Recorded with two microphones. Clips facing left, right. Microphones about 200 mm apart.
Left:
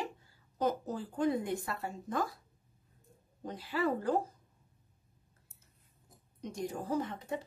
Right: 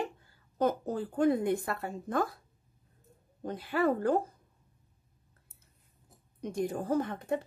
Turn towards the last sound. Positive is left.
turn(degrees=-55)  # may be behind; listen again after turning